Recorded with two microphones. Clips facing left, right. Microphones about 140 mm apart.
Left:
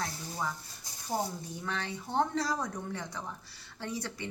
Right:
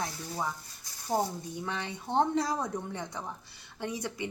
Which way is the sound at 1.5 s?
20° right (ahead or behind).